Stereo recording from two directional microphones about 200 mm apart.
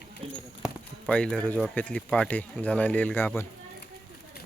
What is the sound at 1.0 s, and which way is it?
Speech, 5° left (ahead or behind).